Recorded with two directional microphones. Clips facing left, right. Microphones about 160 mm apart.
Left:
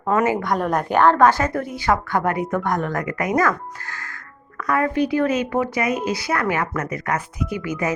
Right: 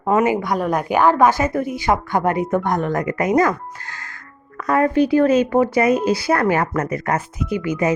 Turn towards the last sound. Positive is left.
turn(degrees=-20)  # may be behind; listen again after turning